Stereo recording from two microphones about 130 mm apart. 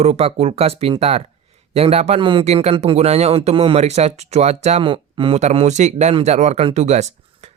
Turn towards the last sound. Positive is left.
turn(degrees=-60)  # may be behind; listen again after turning